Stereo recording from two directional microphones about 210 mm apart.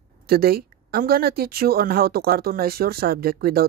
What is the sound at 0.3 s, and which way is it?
Speech, 45° right (ahead or behind).